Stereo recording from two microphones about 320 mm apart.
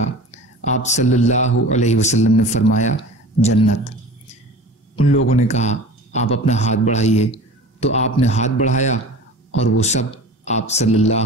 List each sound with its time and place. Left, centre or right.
0.3 s speech: left
5.3 s speech: left